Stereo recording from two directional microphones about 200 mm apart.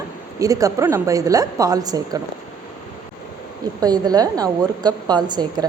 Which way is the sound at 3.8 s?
20° right (ahead or behind).